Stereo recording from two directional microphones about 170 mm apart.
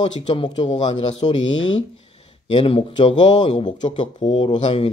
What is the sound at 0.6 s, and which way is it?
Speech, 40° left (ahead or behind).